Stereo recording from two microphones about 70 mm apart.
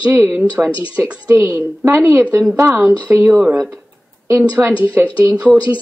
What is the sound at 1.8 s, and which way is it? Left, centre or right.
Speech, right.